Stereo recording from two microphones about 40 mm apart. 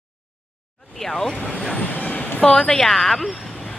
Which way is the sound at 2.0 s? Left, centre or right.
Left.